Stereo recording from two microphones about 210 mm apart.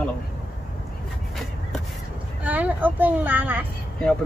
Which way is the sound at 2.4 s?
5° right (ahead or behind).